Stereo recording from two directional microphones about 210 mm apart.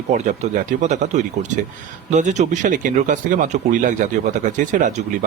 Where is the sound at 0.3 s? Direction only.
35° right (ahead or behind).